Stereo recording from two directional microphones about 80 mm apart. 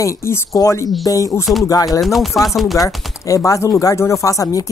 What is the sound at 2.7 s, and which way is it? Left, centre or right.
Speech, left.